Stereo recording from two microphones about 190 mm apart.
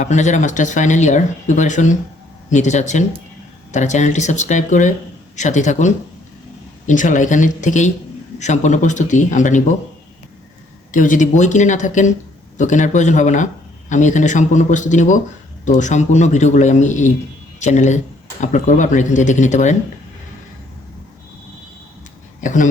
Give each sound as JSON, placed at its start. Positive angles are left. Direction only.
{"t": 0.0, "sound": "speech", "side_deg": 40}
{"t": 10.9, "sound": "speech", "side_deg": 45}
{"t": 22.4, "sound": "speech", "side_deg": 40}